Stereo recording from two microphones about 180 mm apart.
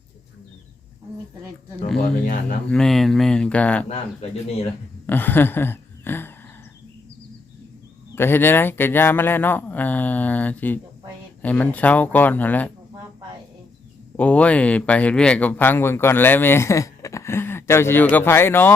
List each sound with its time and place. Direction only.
2.6 s speech: 5° left (ahead or behind)
3.8 s speech: 35° left (ahead or behind)
5.0 s speech: 10° left (ahead or behind)
8.1 s speech: 10° left (ahead or behind)
14.2 s speech: 5° left (ahead or behind)